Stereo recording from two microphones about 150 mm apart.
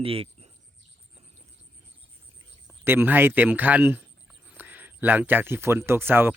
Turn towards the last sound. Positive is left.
turn(degrees=-15)  # may be behind; listen again after turning